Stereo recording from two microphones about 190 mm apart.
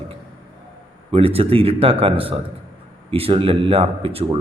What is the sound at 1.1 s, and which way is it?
A man's voice, 30° right (ahead or behind).